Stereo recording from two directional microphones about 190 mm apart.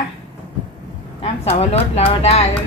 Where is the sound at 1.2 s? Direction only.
35° left (ahead or behind).